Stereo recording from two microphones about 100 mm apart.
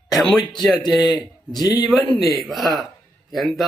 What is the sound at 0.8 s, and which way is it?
A man's voice, 40° left (ahead or behind).